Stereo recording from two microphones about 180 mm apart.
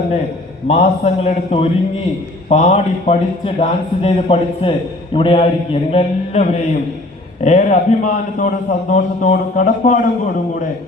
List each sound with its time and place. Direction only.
0.7 s a man's voice: 35° left (ahead or behind)